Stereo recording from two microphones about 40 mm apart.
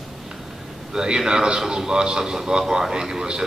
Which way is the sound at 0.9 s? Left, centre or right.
Right.